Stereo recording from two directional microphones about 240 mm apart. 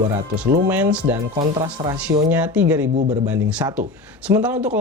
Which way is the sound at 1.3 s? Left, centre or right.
Right.